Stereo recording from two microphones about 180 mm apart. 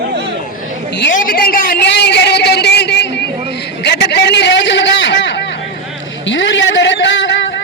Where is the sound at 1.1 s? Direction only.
50° left (ahead or behind); by 5.5 s 80° left.